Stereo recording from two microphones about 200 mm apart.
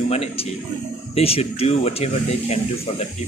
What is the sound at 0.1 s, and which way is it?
A man's voice, 30° left (ahead or behind).